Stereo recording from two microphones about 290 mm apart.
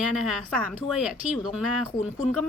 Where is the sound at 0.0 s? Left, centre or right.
Centre.